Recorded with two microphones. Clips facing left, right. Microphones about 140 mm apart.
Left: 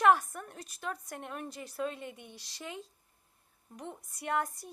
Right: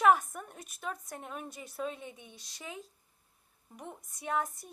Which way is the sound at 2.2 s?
60° left (ahead or behind).